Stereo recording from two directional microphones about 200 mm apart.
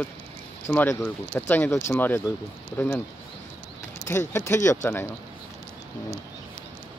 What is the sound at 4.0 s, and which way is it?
Speech, 10° left (ahead or behind).